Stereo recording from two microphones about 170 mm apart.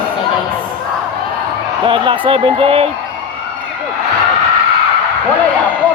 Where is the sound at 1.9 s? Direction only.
30° right (ahead or behind).